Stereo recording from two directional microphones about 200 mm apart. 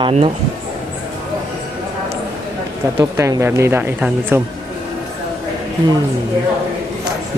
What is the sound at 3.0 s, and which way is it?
Speech, 15° right (ahead or behind).